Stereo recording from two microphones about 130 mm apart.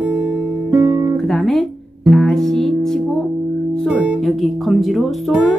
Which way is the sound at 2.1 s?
5° left (ahead or behind).